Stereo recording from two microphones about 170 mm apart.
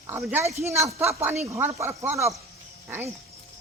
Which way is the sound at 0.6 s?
15° right (ahead or behind).